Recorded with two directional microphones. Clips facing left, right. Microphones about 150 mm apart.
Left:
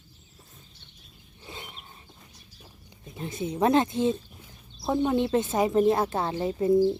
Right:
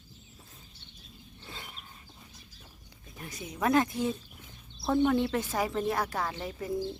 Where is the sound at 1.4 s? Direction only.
20° left (ahead or behind).